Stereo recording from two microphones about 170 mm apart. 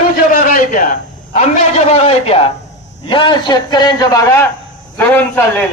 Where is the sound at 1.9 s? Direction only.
35° left (ahead or behind); by 4.4 s 20° left (ahead or behind).